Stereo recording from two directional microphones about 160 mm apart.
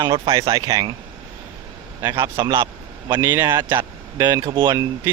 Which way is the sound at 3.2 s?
15° right (ahead or behind).